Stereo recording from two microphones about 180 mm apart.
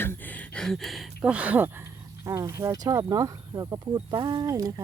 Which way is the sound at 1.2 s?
5° right (ahead or behind).